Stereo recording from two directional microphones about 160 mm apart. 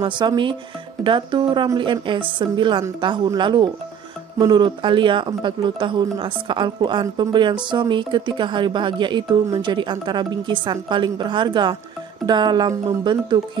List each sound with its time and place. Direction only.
0.0 s speech: 30° right (ahead or behind)